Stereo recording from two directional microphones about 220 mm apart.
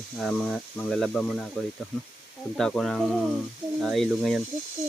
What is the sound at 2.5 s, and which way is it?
Speech, centre (ahead or behind).